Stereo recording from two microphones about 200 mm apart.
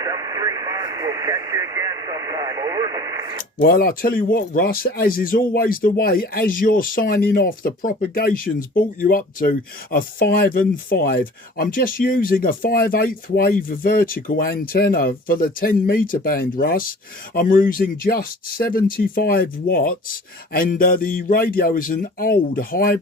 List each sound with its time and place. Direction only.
0.0 s radio: 15° right (ahead or behind)
3.6 s speech: 50° left (ahead or behind)